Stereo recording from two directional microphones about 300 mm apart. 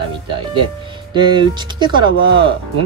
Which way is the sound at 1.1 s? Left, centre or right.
Centre.